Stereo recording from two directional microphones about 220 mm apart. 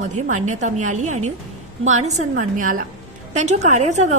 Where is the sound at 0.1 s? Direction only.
35° right (ahead or behind).